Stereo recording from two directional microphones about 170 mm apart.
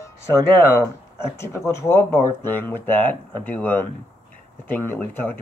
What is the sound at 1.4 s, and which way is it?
Speech, 15° left (ahead or behind).